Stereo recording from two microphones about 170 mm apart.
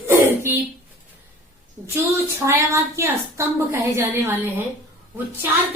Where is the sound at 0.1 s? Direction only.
10° right (ahead or behind).